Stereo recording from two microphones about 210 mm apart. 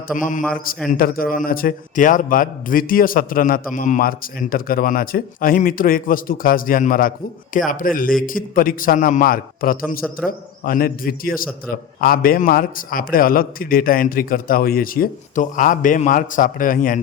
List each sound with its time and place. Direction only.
0.1 s a man's voice: 40° left (ahead or behind)